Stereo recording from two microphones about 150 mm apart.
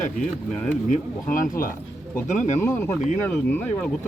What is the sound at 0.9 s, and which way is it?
Speech, 60° left (ahead or behind).